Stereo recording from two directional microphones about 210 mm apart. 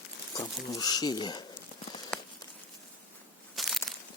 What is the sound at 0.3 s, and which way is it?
Speech, 20° left (ahead or behind).